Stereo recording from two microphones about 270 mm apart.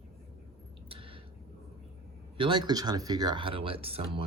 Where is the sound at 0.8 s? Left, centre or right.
Centre.